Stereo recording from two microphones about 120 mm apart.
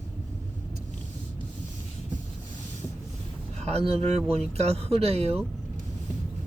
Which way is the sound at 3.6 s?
60° right (ahead or behind).